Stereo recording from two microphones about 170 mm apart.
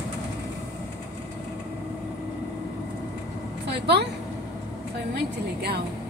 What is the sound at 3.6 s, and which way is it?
Vehicle, 80° right.